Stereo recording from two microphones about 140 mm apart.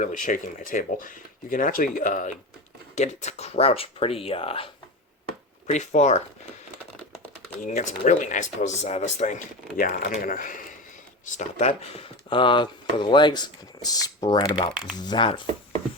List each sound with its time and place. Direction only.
0.0 s speech: 70° left (ahead or behind)
2.9 s speech: 55° left (ahead or behind)
5.7 s speech: 55° left (ahead or behind)
7.6 s speech: 60° left (ahead or behind)
11.3 s speech: 50° left (ahead or behind); by 15.4 s 35° left (ahead or behind)